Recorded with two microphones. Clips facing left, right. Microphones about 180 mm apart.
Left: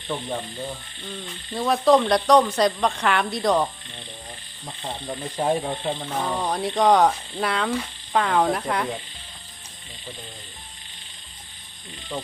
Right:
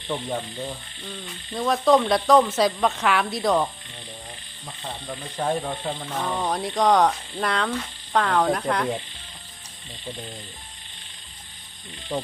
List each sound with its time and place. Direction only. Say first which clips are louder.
0.1 s speech: right 1 dB; 5° right (ahead or behind)
4.8 s speech: left 3 dB; 20° left (ahead or behind)
6.1 s speech: right 1 dB; centre (ahead or behind)